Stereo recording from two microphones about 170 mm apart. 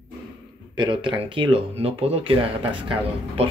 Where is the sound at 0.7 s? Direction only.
30° right (ahead or behind).